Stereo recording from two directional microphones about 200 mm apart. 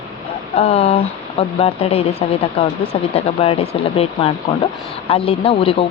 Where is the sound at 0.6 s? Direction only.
30° left (ahead or behind).